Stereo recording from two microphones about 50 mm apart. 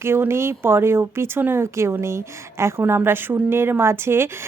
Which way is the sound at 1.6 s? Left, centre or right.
Right.